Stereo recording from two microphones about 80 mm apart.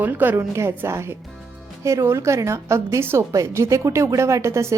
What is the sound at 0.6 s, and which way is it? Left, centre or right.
A woman's voice, right.